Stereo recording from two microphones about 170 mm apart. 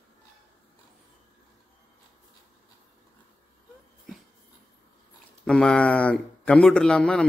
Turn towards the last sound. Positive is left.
turn(degrees=5)  # may be behind; listen again after turning